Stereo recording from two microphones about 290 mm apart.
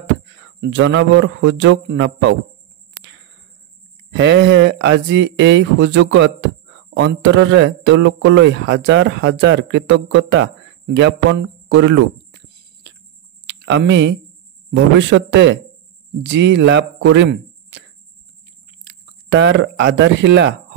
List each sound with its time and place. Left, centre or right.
0.6 s speech: right
4.1 s speech: right
13.5 s speech: right
19.3 s speech: right